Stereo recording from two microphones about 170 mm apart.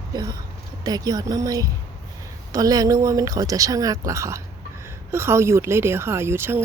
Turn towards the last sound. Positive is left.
turn(degrees=-15)  # may be behind; listen again after turning